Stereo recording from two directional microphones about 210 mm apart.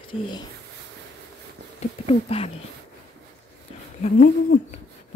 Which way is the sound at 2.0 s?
30° left (ahead or behind).